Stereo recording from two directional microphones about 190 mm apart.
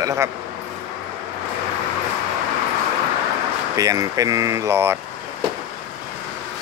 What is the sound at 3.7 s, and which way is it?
Speech, 15° right (ahead or behind).